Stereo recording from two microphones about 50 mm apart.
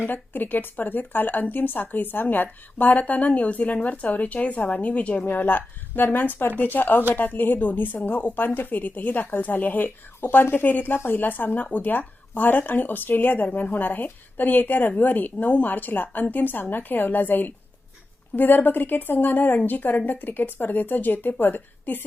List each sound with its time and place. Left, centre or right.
0.0 s a woman's voice: left
5.2 s a woman's voice: left